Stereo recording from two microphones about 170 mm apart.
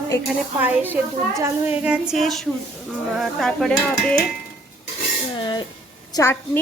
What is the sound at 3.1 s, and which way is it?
Dishes, centre (ahead or behind).